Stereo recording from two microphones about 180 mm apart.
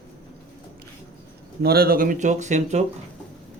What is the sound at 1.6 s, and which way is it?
Speech, 60° right (ahead or behind).